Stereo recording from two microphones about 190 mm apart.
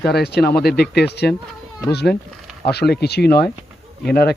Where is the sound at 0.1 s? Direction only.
60° left (ahead or behind).